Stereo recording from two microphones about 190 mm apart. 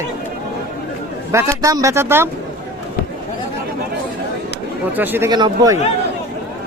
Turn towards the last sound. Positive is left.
turn(degrees=-20)  # may be behind; listen again after turning